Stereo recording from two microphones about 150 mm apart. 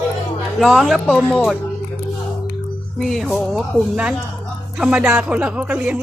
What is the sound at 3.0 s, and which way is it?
Speech, centre (ahead or behind).